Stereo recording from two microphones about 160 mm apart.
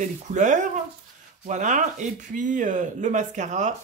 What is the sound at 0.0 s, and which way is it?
Speech, 50° right (ahead or behind).